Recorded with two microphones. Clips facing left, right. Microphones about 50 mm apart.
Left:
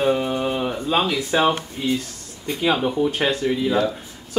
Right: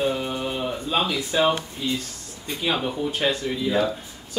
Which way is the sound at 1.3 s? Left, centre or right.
Left.